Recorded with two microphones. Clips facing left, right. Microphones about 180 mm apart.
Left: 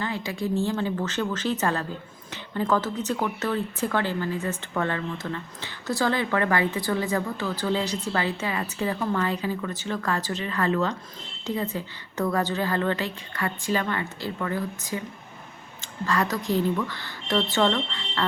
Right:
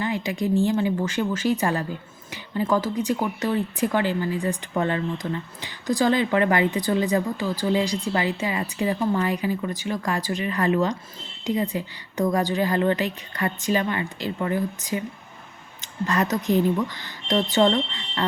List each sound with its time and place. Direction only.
0.0 s speech: 15° right (ahead or behind)